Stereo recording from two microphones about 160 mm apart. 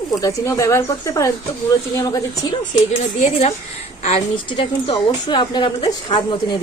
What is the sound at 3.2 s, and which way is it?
Speech, 45° left (ahead or behind).